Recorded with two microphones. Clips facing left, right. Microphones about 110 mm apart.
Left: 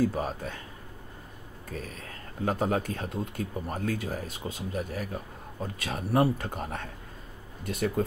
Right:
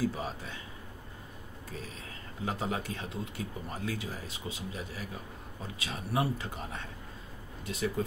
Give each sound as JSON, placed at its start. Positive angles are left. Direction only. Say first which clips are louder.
{"t": 0.0, "sound": "speech", "louder": "left 5 dB", "side_deg": 50}
{"t": 1.7, "sound": "speech", "louder": "left 5 dB", "side_deg": 50}